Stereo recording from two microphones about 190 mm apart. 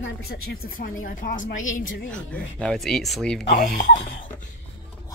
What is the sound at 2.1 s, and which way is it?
Speech, 5° left (ahead or behind).